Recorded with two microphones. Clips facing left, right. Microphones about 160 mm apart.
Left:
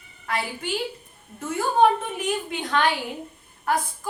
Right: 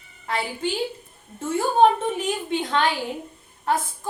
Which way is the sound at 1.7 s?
25° right (ahead or behind).